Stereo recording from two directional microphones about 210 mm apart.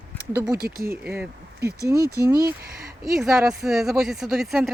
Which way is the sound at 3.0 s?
Centre (ahead or behind).